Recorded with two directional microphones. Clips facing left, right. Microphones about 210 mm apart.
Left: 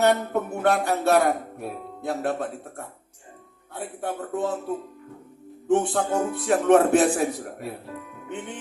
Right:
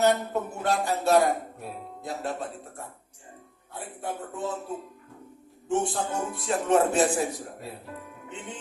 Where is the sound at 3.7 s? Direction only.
60° left (ahead or behind).